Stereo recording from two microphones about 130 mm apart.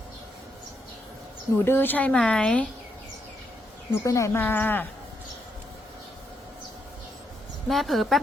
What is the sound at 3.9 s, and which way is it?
Speech, 25° left (ahead or behind).